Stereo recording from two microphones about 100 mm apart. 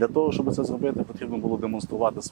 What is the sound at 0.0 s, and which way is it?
Speech, 15° right (ahead or behind).